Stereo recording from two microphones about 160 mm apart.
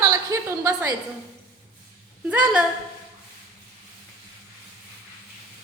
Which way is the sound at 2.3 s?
10° right (ahead or behind).